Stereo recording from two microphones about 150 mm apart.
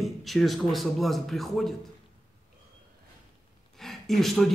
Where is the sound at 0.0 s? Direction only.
Centre (ahead or behind).